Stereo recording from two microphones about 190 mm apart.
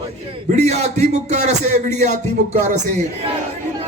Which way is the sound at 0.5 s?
35° right (ahead or behind).